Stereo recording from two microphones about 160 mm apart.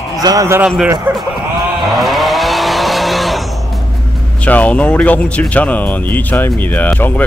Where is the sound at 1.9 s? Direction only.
Centre (ahead or behind).